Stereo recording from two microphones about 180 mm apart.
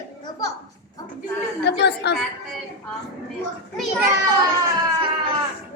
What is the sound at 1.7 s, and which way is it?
Speech, 70° left (ahead or behind).